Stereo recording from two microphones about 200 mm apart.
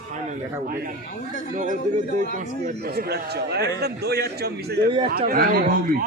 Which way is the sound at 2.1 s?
40° right (ahead or behind).